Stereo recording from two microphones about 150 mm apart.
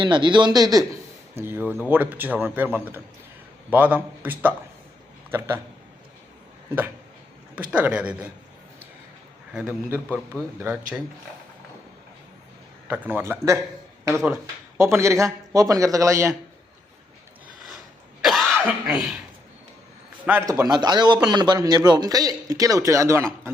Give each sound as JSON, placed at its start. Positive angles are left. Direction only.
{"t": 0.0, "sound": "speech", "side_deg": -30}
{"t": 1.4, "sound": "a man's voice", "side_deg": -15}
{"t": 7.5, "sound": "a man's voice", "side_deg": -10}
{"t": 9.5, "sound": "a man's voice", "side_deg": -10}
{"t": 12.9, "sound": "a man's voice", "side_deg": -10}
{"t": 18.2, "sound": "cough", "side_deg": 0}
{"t": 18.5, "sound": "cough", "side_deg": -15}
{"t": 18.9, "sound": "speech", "side_deg": 0}
{"t": 20.5, "sound": "a man's voice", "side_deg": -25}